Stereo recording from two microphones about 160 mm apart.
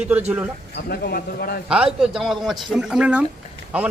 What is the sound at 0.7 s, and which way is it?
Speech, 80° left.